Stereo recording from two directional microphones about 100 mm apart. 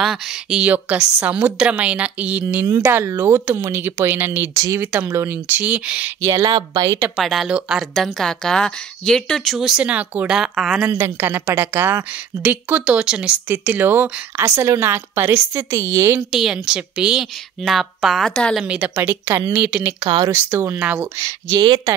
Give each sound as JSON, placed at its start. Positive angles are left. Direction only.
{"t": 0.0, "sound": "a woman's voice", "side_deg": -5}
{"t": 2.6, "sound": "a woman's voice", "side_deg": -25}
{"t": 6.2, "sound": "speech", "side_deg": -35}
{"t": 7.2, "sound": "a woman's voice", "side_deg": -5}
{"t": 7.9, "sound": "speech", "side_deg": 5}
{"t": 10.8, "sound": "speech", "side_deg": -25}
{"t": 16.3, "sound": "a woman's voice", "side_deg": -5}
{"t": 18.6, "sound": "a woman's voice", "side_deg": -10}
{"t": 20.8, "sound": "a woman's voice", "side_deg": -15}
{"t": 21.2, "sound": "speech", "side_deg": -35}